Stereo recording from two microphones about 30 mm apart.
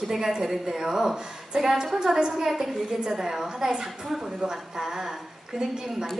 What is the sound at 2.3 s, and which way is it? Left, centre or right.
A woman's voice, centre.